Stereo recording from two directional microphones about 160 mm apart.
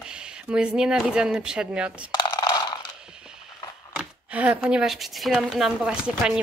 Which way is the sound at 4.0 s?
10° right (ahead or behind).